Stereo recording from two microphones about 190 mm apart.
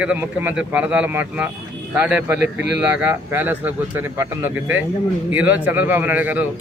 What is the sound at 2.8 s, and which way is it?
Speech, 10° right (ahead or behind).